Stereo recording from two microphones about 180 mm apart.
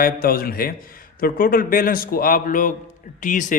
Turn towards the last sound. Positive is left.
turn(degrees=45)  # may be behind; listen again after turning